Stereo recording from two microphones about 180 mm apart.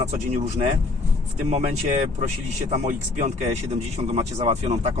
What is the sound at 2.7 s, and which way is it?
Speech, 40° right (ahead or behind).